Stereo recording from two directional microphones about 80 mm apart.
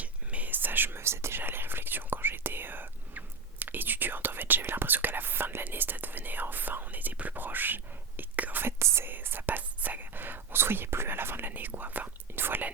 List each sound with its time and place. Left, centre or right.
0.0 s whispering: centre